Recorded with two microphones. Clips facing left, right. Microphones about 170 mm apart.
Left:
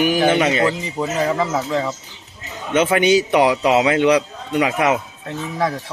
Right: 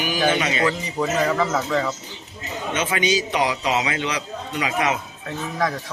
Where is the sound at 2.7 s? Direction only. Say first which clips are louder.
Left 8 dB; 55° left (ahead or behind).